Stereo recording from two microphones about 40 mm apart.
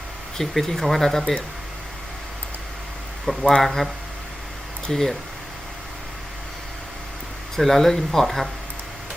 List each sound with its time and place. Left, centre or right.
0.3 s speech: centre
3.3 s speech: centre
3.6 s speech: centre
4.9 s speech: centre
7.5 s speech: centre